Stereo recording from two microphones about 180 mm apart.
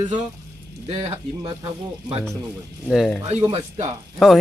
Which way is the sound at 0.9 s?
35° right (ahead or behind).